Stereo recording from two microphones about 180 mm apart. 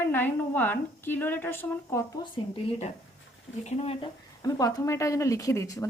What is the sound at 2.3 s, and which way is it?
Speech, 30° left (ahead or behind).